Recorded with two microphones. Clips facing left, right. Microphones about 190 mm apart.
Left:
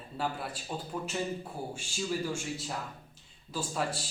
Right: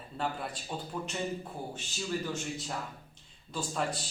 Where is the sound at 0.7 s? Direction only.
Centre (ahead or behind).